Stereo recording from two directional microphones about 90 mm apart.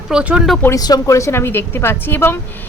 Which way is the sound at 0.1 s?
10° right (ahead or behind).